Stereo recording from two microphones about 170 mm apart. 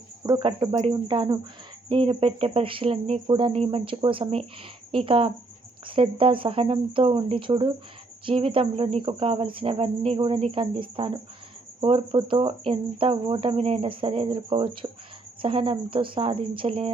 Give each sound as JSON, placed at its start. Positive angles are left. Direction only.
{"t": 0.3, "sound": "speech", "side_deg": -25}